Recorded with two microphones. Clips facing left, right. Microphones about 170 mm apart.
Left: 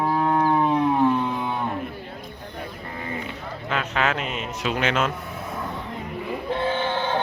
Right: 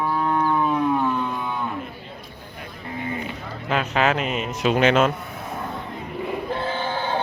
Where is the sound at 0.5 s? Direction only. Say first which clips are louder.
Left 1 dB; 25° left (ahead or behind).